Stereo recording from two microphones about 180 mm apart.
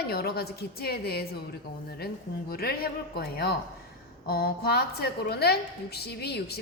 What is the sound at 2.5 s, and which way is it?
A woman's voice, 55° left (ahead or behind).